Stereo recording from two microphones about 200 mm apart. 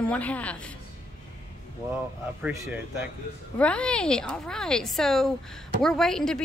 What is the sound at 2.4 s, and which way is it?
Speech, 10° right (ahead or behind).